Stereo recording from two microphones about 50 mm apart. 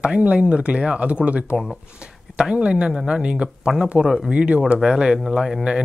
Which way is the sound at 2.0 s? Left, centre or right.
Centre.